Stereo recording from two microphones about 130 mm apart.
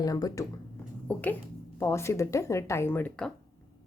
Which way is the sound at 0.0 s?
25° left (ahead or behind).